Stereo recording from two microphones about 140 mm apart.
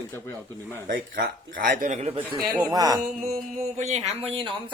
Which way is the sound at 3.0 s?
65° right (ahead or behind).